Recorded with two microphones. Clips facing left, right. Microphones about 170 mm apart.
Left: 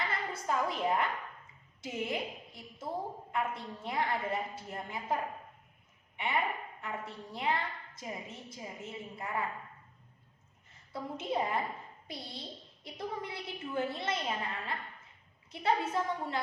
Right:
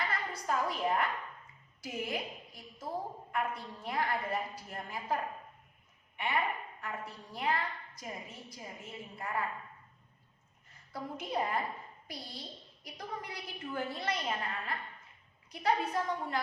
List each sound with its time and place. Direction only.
0.1 s a woman's voice: 25° left (ahead or behind)
10.9 s a woman's voice: 25° left (ahead or behind)